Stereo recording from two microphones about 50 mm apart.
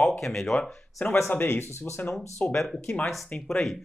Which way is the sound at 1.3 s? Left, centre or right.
Left.